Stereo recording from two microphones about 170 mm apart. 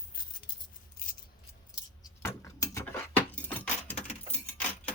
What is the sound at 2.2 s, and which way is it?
Keys jangling, 20° left (ahead or behind).